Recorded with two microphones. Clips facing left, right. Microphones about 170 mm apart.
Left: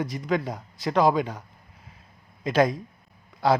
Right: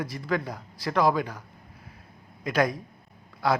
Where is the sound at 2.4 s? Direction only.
25° left (ahead or behind).